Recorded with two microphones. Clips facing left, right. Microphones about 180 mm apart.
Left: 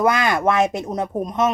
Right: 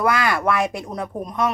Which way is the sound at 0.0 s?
20° left (ahead or behind).